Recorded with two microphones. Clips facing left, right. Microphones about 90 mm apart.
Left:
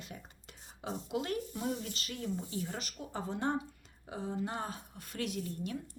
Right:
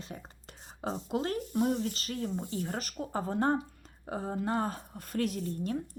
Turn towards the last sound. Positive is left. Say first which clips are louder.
# right 4 dB
turn(degrees=-40)  # may be behind; listen again after turning